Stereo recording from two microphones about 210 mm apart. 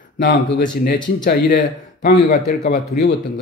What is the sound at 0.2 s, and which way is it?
Speech, 50° left (ahead or behind).